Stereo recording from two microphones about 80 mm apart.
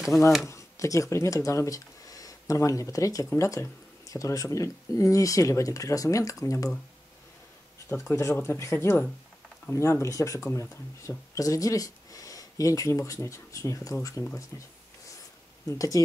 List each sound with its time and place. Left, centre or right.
0.1 s speech: left
7.9 s speech: left